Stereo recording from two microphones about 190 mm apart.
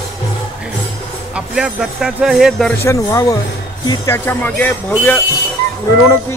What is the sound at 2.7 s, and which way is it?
Music, 15° left (ahead or behind).